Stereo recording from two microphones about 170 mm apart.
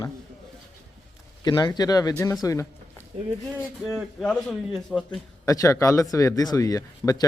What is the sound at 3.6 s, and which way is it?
A man's voice, centre (ahead or behind).